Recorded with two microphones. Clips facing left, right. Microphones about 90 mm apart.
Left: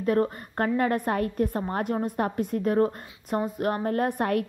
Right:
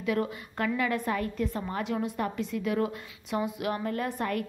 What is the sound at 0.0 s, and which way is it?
A woman's voice, 40° left (ahead or behind).